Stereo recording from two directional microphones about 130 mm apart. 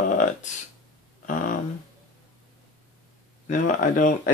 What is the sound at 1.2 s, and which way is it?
Speech, 90° left.